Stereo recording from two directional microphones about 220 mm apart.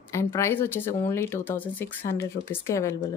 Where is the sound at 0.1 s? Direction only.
10° left (ahead or behind).